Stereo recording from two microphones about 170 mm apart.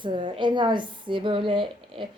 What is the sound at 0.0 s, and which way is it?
A woman's voice, 30° right (ahead or behind).